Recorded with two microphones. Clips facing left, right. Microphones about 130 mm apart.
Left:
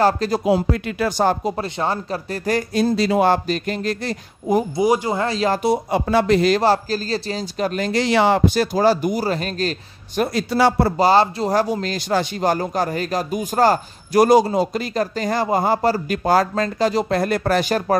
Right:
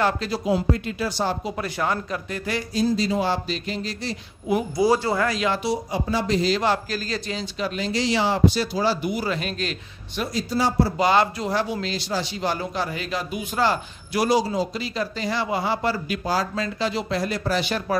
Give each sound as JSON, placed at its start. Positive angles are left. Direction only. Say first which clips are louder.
{"t": 0.0, "sound": "speech", "louder": "left 6 dB", "side_deg": 40}
{"t": 0.7, "sound": "a man's voice", "louder": "left 3 dB", "side_deg": 65}
{"t": 1.6, "sound": "speech", "louder": "left 3 dB", "side_deg": 30}
{"t": 2.7, "sound": "a man's voice", "louder": "left 3 dB", "side_deg": 65}
{"t": 4.7, "sound": "speech", "louder": "left 2 dB", "side_deg": 15}
{"t": 5.2, "sound": "speech", "louder": "left 3 dB", "side_deg": 30}
{"t": 5.5, "sound": "speech", "louder": "left 6 dB", "side_deg": 50}
{"t": 6.6, "sound": "a man's voice", "louder": "left 5 dB", "side_deg": 35}
{"t": 10.2, "sound": "speech", "louder": "left 6 dB", "side_deg": 65}
{"t": 11.0, "sound": "a man's voice", "louder": "left 5 dB", "side_deg": 35}
{"t": 16.3, "sound": "a man's voice", "louder": "left 8 dB", "side_deg": 50}